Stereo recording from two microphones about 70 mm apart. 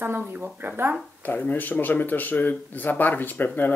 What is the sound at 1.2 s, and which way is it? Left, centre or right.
Speech, left.